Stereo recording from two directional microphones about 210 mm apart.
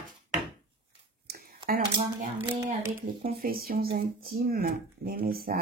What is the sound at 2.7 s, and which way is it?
Speech, 40° right (ahead or behind).